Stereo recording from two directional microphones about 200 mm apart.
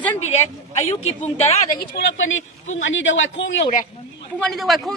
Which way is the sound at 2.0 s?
70° left (ahead or behind).